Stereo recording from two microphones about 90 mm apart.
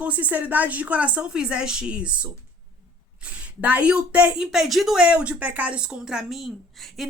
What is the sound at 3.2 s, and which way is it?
Speech, 15° right (ahead or behind).